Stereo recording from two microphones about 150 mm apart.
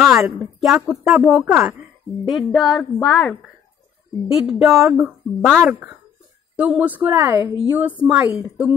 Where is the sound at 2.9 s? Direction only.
20° left (ahead or behind).